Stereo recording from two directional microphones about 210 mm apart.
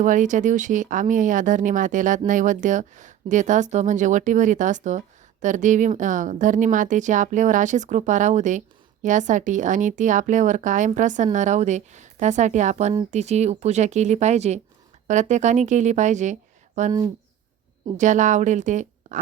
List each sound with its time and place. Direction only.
0.0 s a woman's voice: 35° right (ahead or behind)
17.9 s speech: 35° right (ahead or behind)